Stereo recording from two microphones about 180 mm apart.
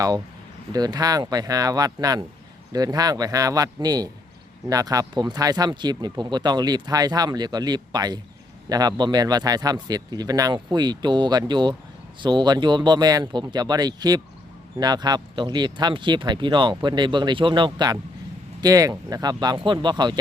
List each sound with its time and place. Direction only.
0.7 s speech: 20° right (ahead or behind)